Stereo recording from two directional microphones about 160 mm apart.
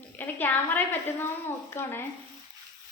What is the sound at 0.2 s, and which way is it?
A woman's voice, 10° left (ahead or behind).